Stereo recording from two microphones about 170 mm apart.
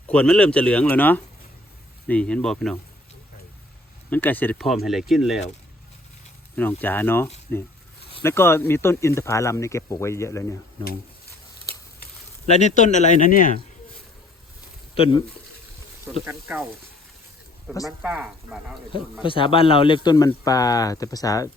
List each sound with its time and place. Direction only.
0.1 s speech: 5° left (ahead or behind)
4.1 s speech: 10° left (ahead or behind)
6.6 s speech: 10° left (ahead or behind)
12.5 s speech: 40° left (ahead or behind)
14.9 s speech: 35° left (ahead or behind)
16.1 s speech: 5° right (ahead or behind)
17.8 s speech: 5° right (ahead or behind)
19.2 s speech: 30° left (ahead or behind)